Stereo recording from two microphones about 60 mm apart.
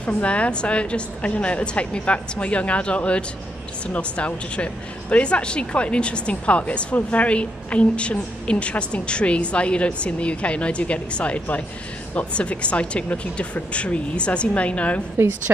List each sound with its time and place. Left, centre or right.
0.0 s speech: left
15.2 s a woman's voice: right